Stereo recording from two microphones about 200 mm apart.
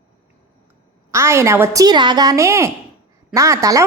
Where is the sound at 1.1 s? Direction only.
15° right (ahead or behind).